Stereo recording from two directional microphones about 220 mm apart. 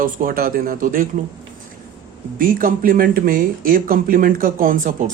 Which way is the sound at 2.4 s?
40° right (ahead or behind).